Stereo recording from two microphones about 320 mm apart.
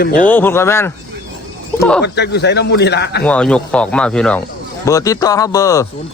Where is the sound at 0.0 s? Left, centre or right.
Left.